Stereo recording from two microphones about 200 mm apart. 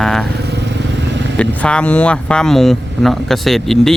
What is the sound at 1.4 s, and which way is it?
Speech, 5° left (ahead or behind).